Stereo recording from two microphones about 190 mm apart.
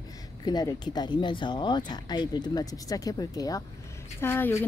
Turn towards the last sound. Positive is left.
turn(degrees=10)  # may be behind; listen again after turning